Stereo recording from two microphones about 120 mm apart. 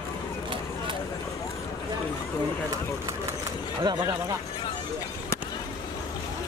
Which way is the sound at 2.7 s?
25° right (ahead or behind).